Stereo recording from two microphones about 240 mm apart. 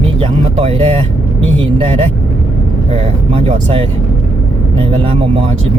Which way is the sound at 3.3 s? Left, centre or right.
Right.